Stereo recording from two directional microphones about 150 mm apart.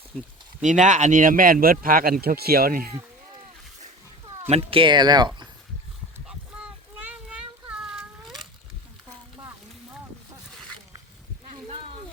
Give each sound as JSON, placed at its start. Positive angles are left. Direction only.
{"t": 0.6, "sound": "speech", "side_deg": -55}
{"t": 4.4, "sound": "speech", "side_deg": -40}
{"t": 6.2, "sound": "a sound", "side_deg": -10}